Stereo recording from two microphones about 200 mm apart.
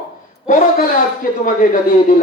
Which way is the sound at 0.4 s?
40° left (ahead or behind).